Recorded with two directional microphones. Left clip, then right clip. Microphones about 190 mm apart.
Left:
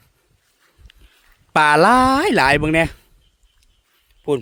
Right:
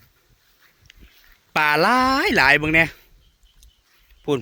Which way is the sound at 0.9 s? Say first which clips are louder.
Right 1 dB; 35° left (ahead or behind).